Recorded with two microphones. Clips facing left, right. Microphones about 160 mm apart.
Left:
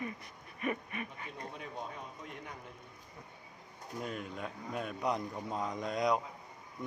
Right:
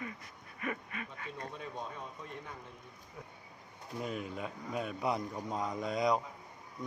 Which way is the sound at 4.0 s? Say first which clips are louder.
Right 2 dB; centre (ahead or behind).